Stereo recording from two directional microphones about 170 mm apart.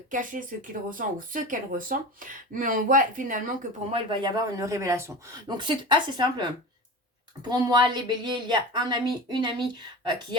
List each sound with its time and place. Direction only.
0.1 s speech: 50° right (ahead or behind)
3.9 s a woman's voice: 30° right (ahead or behind)